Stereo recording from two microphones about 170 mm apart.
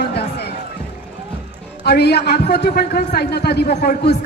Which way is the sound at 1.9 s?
75° left (ahead or behind).